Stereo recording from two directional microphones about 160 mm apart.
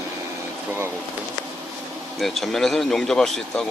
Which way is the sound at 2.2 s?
Centre (ahead or behind).